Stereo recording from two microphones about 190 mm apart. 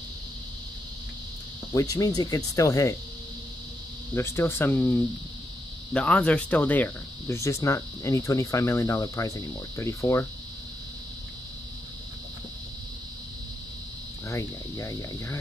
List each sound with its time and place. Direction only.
1.7 s speech: 20° left (ahead or behind)
4.1 s speech: 15° left (ahead or behind)
5.9 s speech: 5° left (ahead or behind)
14.2 s speech: 15° left (ahead or behind)